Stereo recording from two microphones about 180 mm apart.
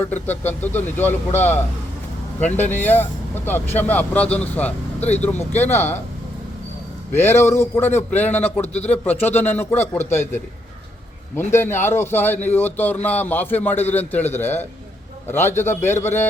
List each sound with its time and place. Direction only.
0.0 s a man's voice: 10° left (ahead or behind)
2.6 s a man's voice: 10° left (ahead or behind)
7.1 s a man's voice: 15° left (ahead or behind)
8.6 s speech: 35° left (ahead or behind)
8.9 s a man's voice: 10° left (ahead or behind)